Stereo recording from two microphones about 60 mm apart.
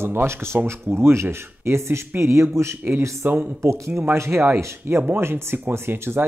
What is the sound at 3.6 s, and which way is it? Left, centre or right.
Speech, right.